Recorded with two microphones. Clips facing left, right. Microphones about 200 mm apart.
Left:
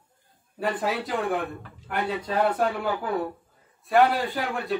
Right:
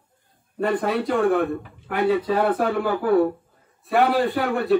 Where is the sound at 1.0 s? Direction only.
Centre (ahead or behind).